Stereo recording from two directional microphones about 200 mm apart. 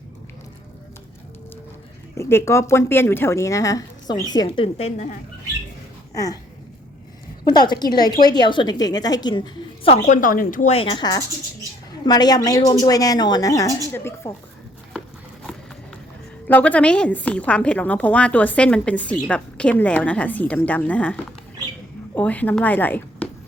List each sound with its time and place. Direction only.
2.1 s a woman's voice: 15° left (ahead or behind); by 5.1 s 35° left (ahead or behind)
6.1 s a woman's voice: 15° left (ahead or behind)
7.5 s a woman's voice: 20° left (ahead or behind)
16.5 s a woman's voice: 10° left (ahead or behind)